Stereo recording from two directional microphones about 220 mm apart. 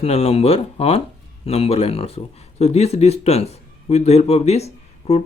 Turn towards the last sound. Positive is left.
turn(degrees=30)  # may be behind; listen again after turning